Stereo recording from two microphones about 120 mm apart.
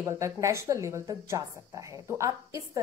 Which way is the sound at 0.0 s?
25° right (ahead or behind).